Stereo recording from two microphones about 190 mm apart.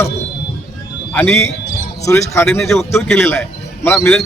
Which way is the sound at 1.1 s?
10° left (ahead or behind).